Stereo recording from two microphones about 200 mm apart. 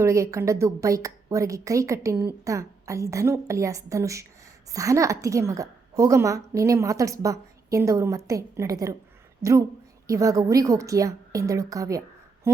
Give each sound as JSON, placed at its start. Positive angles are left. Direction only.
{"t": 0.0, "sound": "a woman's voice", "side_deg": -15}